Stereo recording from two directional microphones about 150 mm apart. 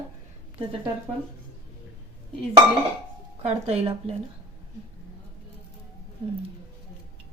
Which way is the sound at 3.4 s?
45° right (ahead or behind).